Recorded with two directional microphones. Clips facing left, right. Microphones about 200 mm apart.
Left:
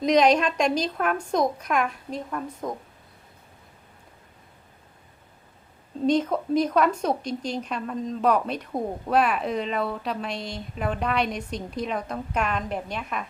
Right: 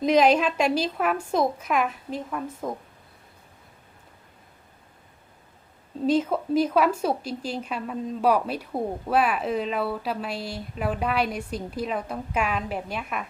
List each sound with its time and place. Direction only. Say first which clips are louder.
0.0 s a woman's voice: even; 5° right (ahead or behind)
6.1 s a woman's voice: even; 5° right (ahead or behind)